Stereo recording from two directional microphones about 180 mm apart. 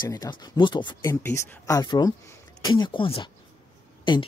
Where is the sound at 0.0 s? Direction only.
25° left (ahead or behind).